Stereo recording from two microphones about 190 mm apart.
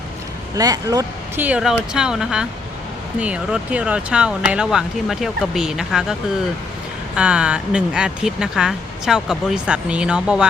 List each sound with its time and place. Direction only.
0.5 s speech: 20° right (ahead or behind)
1.5 s speech: 5° right (ahead or behind)
7.2 s speech: 5° right (ahead or behind)